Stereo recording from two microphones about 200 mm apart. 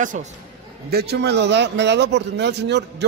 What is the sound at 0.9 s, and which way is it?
A man's voice, 55° right (ahead or behind).